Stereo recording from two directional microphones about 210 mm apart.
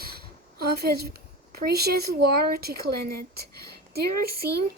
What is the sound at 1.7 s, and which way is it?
Speech, 50° right (ahead or behind).